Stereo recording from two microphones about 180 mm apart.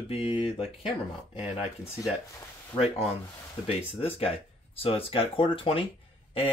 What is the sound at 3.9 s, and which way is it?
Speech, 30° left (ahead or behind).